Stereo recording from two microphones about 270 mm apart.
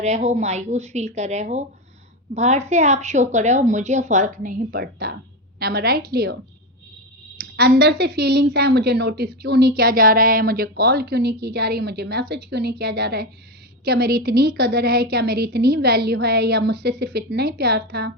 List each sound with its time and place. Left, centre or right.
0.0 s a woman's voice: right
7.3 s a woman's voice: right